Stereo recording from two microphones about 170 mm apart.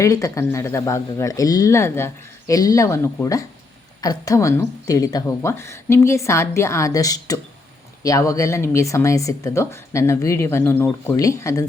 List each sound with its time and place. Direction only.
0.0 s speech: 20° left (ahead or behind)